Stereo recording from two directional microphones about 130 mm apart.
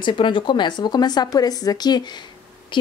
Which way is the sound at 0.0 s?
40° left (ahead or behind).